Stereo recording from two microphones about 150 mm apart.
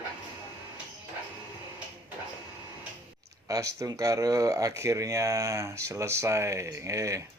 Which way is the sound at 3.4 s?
20° right (ahead or behind).